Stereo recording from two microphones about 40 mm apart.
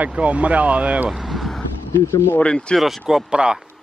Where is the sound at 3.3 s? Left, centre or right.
Right.